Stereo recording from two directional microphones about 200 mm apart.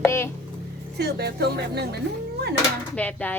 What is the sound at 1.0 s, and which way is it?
Music, 55° right (ahead or behind).